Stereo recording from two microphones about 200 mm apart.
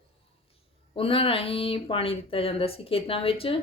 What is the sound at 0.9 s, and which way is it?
Speech, 30° left (ahead or behind).